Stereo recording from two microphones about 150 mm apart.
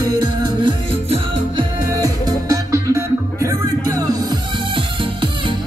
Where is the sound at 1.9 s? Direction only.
25° right (ahead or behind).